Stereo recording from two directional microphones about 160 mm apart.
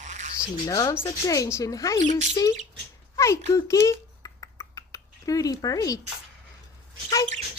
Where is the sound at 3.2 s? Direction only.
20° left (ahead or behind).